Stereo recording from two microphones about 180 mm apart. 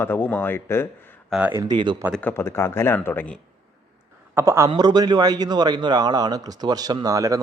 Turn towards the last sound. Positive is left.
turn(degrees=-20)  # may be behind; listen again after turning